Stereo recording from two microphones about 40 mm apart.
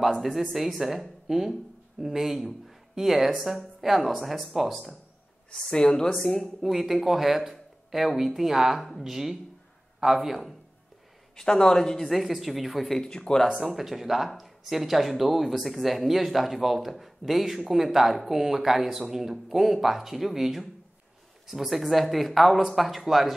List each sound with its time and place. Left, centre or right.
0.0 s speech: centre
5.5 s a man's voice: centre
6.6 s speech: centre
11.3 s a man's voice: centre
12.0 s speech: centre
13.0 s a man's voice: centre
13.6 s speech: centre